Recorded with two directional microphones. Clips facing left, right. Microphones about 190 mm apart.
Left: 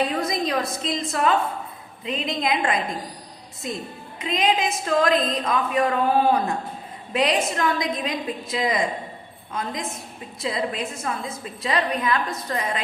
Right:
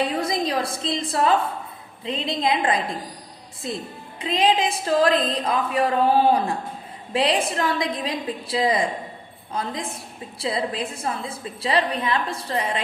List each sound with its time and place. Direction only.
0.0 s a woman's voice: 30° right (ahead or behind)
4.2 s a woman's voice: 30° right (ahead or behind)